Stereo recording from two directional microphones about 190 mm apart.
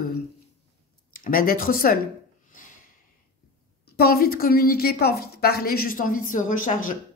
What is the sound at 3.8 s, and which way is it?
Speech, 55° left (ahead or behind).